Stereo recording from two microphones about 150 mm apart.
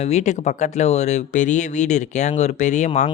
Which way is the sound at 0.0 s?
50° left (ahead or behind).